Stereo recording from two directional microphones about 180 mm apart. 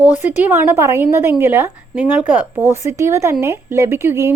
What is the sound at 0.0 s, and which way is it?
Speech, 10° right (ahead or behind).